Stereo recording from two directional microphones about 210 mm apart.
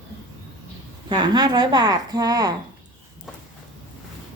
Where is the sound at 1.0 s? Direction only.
20° right (ahead or behind).